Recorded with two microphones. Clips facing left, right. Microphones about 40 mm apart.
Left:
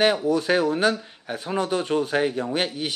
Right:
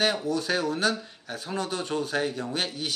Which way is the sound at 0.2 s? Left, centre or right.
Centre.